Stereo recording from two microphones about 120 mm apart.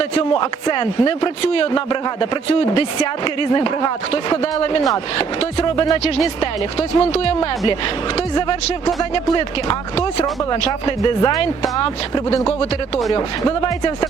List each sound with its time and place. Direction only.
0.3 s speech: 40° left (ahead or behind)
3.5 s speech: 40° left (ahead or behind)
9.1 s speech: 40° left (ahead or behind)